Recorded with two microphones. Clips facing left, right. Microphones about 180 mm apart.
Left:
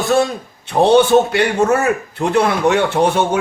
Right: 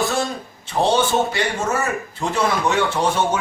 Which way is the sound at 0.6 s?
60° left (ahead or behind).